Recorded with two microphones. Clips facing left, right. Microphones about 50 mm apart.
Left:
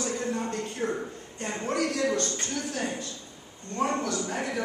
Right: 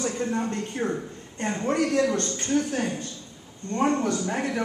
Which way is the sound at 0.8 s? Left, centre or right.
Right.